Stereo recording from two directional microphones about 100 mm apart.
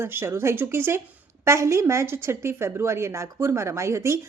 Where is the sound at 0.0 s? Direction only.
25° right (ahead or behind).